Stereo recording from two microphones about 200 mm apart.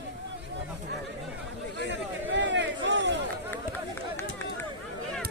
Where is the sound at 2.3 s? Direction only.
65° right (ahead or behind).